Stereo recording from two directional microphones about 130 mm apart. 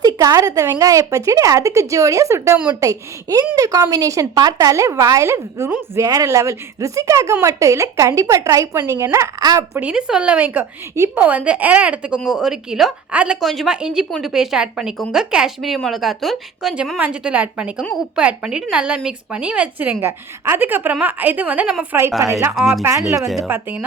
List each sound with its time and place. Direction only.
0.0 s a woman's voice: 25° right (ahead or behind)
9.7 s a woman's voice: 5° right (ahead or behind)
22.5 s speech: centre (ahead or behind)
22.8 s a woman's voice: 20° right (ahead or behind)